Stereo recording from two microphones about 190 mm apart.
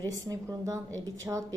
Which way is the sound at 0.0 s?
20° right (ahead or behind).